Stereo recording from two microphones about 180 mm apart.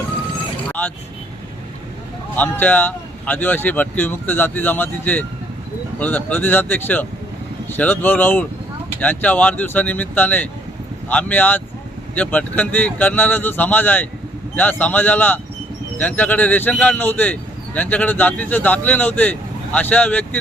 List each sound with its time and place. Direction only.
0.7 s vehicle: 10° left (ahead or behind)
2.3 s speech: 10° left (ahead or behind)